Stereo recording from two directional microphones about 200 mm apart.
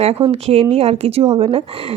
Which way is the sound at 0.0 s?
30° right (ahead or behind).